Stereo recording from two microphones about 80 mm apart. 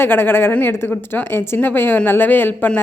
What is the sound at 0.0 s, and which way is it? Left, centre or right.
A woman's voice, left.